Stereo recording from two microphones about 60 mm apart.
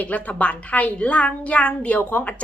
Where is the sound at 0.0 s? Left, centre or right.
Left.